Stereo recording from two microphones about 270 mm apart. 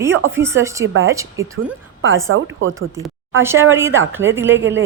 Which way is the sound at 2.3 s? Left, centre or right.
Right.